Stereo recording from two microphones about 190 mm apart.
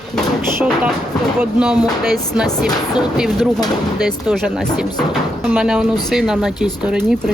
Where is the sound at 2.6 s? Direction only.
20° left (ahead or behind).